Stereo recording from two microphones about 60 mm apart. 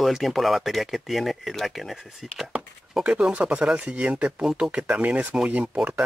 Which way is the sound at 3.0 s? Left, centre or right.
Centre.